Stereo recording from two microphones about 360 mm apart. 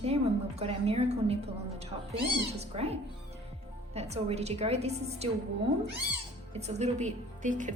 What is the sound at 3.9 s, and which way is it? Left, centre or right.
A woman's voice, centre.